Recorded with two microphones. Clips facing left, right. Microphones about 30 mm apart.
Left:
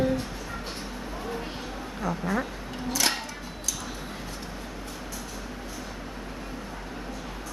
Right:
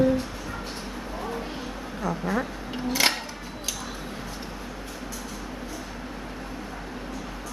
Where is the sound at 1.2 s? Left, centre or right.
Centre.